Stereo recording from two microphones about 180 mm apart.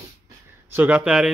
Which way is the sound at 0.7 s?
10° right (ahead or behind).